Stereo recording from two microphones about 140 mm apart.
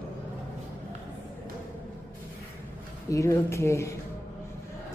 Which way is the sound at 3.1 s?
20° left (ahead or behind).